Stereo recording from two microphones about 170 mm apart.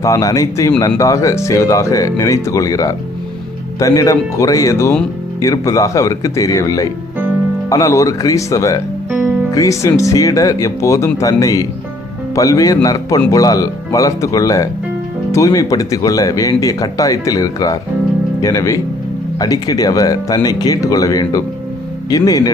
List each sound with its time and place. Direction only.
0.0 s speech: 20° left (ahead or behind)
9.0 s music: 10° right (ahead or behind)
9.5 s speech: 20° left (ahead or behind)